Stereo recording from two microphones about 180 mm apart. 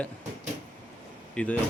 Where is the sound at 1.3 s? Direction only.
5° left (ahead or behind).